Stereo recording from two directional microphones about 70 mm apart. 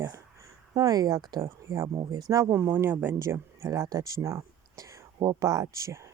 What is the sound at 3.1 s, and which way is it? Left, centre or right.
Speech, right.